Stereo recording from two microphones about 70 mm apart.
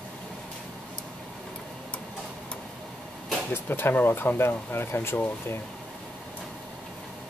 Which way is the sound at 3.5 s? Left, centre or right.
Left.